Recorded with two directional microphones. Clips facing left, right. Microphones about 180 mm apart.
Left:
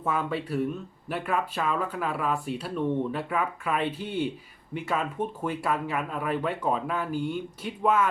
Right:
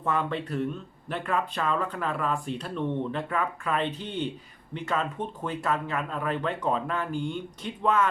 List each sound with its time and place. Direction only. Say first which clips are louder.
0.0 s speech: even; 5° left (ahead or behind)